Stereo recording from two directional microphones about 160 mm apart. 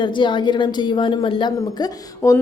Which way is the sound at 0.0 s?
30° left (ahead or behind).